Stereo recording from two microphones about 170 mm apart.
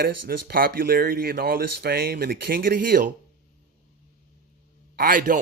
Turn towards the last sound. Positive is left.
turn(degrees=-55)  # may be behind; listen again after turning